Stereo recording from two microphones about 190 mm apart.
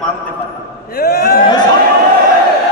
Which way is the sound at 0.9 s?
50° left (ahead or behind).